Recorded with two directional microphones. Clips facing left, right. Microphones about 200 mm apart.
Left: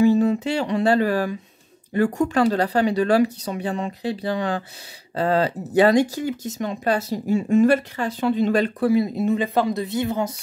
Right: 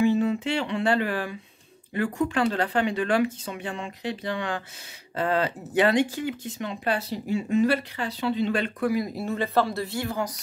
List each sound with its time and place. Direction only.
0.0 s speech: 40° left (ahead or behind); by 10.3 s 20° left (ahead or behind)